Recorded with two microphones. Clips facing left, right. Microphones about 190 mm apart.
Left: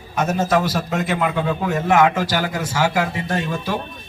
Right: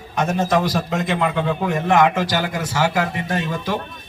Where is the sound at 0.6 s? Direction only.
15° right (ahead or behind).